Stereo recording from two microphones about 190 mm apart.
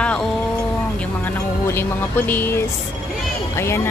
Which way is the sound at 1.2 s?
10° left (ahead or behind).